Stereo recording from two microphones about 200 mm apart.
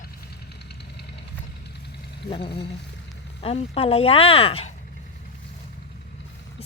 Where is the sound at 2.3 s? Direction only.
25° left (ahead or behind).